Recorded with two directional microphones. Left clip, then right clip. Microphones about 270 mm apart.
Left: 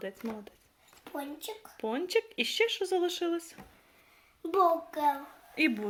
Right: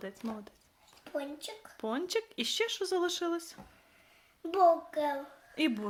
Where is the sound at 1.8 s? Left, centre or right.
Centre.